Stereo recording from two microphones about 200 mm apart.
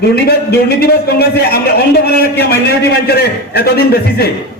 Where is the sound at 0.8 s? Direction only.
50° left (ahead or behind).